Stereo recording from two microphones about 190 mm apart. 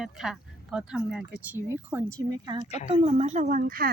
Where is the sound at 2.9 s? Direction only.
30° right (ahead or behind).